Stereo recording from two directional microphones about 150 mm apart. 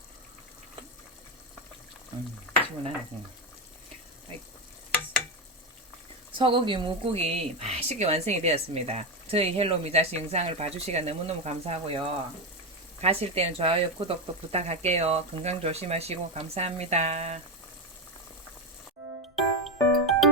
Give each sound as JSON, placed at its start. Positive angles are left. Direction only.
{"t": 6.3, "sound": "speech", "side_deg": -35}
{"t": 19.4, "sound": "music", "side_deg": 0}